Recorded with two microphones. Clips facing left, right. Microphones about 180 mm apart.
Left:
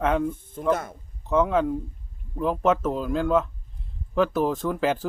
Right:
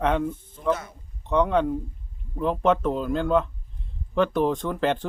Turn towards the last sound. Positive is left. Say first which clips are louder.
# even
turn(degrees=5)  # may be behind; listen again after turning